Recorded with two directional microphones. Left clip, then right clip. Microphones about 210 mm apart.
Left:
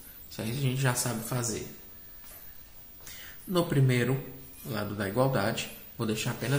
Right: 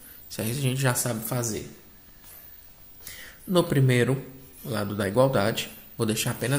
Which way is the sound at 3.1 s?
40° right (ahead or behind).